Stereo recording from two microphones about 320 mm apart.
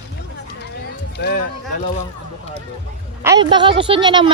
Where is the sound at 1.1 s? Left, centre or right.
Left.